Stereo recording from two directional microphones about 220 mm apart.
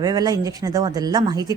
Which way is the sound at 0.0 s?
15° right (ahead or behind).